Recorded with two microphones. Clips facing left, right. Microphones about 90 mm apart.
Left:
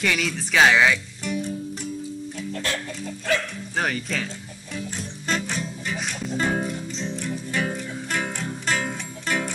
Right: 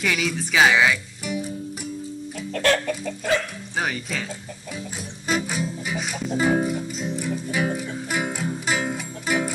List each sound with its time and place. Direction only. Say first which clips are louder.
0.0 s speech: right 1 dB; 5° right (ahead or behind)
2.5 s music: right 10 dB; 60° right (ahead or behind)
3.7 s speech: left 1 dB; 5° right (ahead or behind)
4.7 s music: left 4 dB; 5° right (ahead or behind)